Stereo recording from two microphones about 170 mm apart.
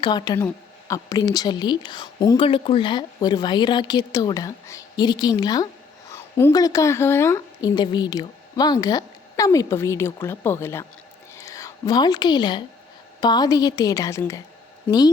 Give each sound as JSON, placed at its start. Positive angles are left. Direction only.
{"t": 0.0, "sound": "a woman's voice", "side_deg": 25}